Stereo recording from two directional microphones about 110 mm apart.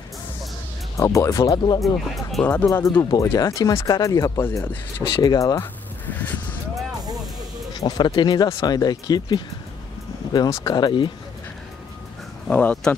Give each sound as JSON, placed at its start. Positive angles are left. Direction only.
{"t": 0.9, "sound": "speech", "side_deg": 25}
{"t": 1.8, "sound": "speech", "side_deg": 0}
{"t": 2.6, "sound": "speech", "side_deg": 25}
{"t": 4.4, "sound": "speech", "side_deg": 20}
{"t": 5.0, "sound": "speech", "side_deg": 40}
{"t": 6.1, "sound": "vehicle", "side_deg": 15}
{"t": 7.8, "sound": "speech", "side_deg": 40}
{"t": 12.4, "sound": "speech", "side_deg": 10}